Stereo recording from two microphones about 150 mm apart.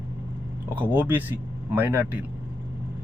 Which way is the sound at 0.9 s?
10° right (ahead or behind).